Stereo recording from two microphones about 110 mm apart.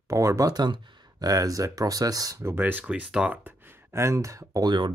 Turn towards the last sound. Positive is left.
turn(degrees=-40)  # may be behind; listen again after turning